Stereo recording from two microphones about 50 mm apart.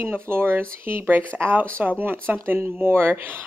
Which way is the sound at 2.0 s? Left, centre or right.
Right.